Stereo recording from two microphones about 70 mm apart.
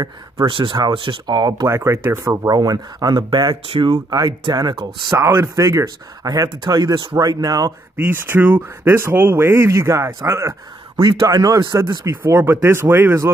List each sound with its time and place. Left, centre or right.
0.0 s speech: right
1.7 s speech: right
2.5 s speech: right
5.1 s speech: right
5.6 s speech: right
7.9 s speech: right
11.0 s speech: right
12.4 s speech: right